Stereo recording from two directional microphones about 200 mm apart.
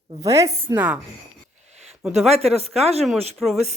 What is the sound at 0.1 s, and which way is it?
Speech, 15° right (ahead or behind).